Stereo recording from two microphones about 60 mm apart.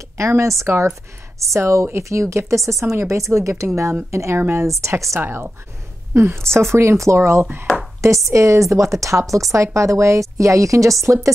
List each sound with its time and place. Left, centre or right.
0.2 s a woman's voice: right
4.8 s speech: right
5.2 s a woman's voice: right